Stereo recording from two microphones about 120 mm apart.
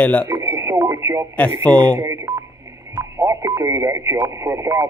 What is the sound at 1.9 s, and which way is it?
Speech, 25° right (ahead or behind).